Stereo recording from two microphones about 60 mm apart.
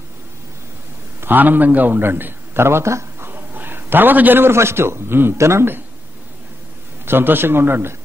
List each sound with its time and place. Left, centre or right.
1.2 s a man's voice: right
3.3 s a man's voice: right
7.1 s a man's voice: right